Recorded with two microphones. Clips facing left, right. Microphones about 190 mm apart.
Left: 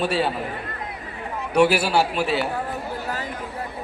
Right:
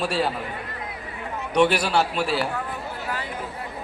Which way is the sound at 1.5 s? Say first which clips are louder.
Left 2 dB; 5° left (ahead or behind).